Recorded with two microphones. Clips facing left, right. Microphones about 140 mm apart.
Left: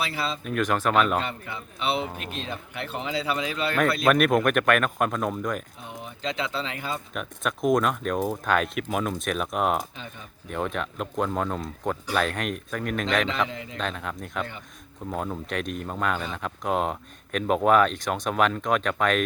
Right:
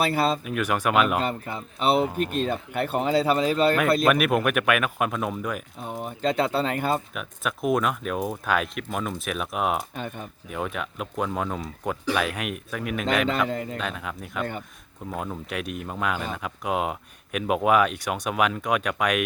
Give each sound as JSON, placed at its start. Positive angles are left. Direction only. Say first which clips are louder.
{"t": 0.0, "sound": "speech", "louder": "right 7 dB", "side_deg": -50}
{"t": 0.4, "sound": "speech", "louder": "even", "side_deg": -10}
{"t": 1.2, "sound": "speech", "louder": "right 5 dB", "side_deg": -40}
{"t": 4.0, "sound": "speech", "louder": "left 1 dB", "side_deg": -5}
{"t": 5.8, "sound": "speech", "louder": "right 7 dB", "side_deg": -50}
{"t": 7.1, "sound": "speech", "louder": "left 1 dB", "side_deg": -5}
{"t": 9.9, "sound": "speech", "louder": "right 8 dB", "side_deg": -55}
{"t": 10.5, "sound": "speech", "louder": "left 2 dB", "side_deg": -5}
{"t": 13.5, "sound": "speech", "louder": "right 8 dB", "side_deg": -45}
{"t": 13.7, "sound": "speech", "louder": "even", "side_deg": -5}